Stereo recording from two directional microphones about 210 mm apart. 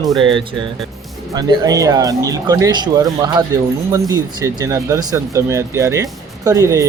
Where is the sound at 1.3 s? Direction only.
20° right (ahead or behind).